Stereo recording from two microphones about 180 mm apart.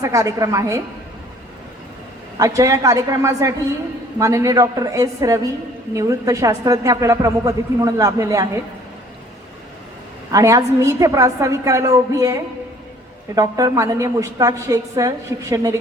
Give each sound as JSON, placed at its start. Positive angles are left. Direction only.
{"t": 0.0, "sound": "a woman's voice", "side_deg": -15}
{"t": 2.4, "sound": "a woman's voice", "side_deg": -20}
{"t": 10.3, "sound": "a woman's voice", "side_deg": -20}